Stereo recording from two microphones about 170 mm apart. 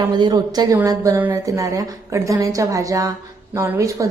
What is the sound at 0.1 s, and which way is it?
Speech, 25° right (ahead or behind).